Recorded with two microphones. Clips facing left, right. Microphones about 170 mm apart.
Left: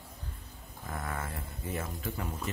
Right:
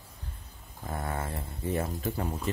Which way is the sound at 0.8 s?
30° right (ahead or behind).